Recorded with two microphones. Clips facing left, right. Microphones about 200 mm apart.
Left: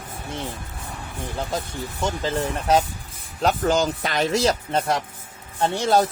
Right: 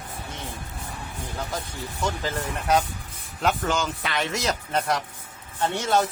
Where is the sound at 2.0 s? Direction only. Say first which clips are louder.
Left 4 dB; 30° left (ahead or behind).